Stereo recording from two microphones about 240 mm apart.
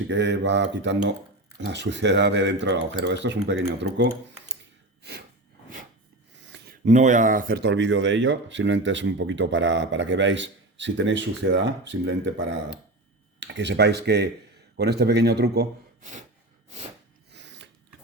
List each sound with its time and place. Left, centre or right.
0.1 s speech: right
6.5 s speech: right
17.3 s a sound: right